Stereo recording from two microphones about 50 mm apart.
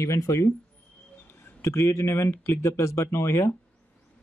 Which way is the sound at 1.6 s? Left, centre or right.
Left.